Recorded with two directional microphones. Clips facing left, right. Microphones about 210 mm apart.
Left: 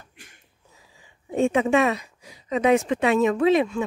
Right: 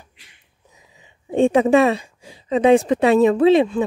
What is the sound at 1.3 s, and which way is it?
A woman's voice, 35° right (ahead or behind).